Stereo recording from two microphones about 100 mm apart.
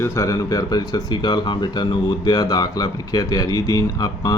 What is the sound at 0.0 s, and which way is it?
Speech, 30° left (ahead or behind).